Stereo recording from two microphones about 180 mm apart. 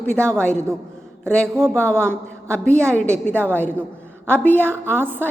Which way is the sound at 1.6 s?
5° left (ahead or behind).